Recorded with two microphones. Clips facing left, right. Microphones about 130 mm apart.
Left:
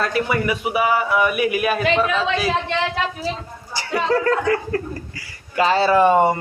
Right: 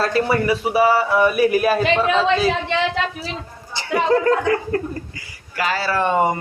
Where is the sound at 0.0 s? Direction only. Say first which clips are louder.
Right 2 dB; 30° right (ahead or behind).